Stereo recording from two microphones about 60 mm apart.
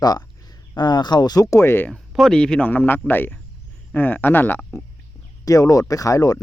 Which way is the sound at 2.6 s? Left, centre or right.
Left.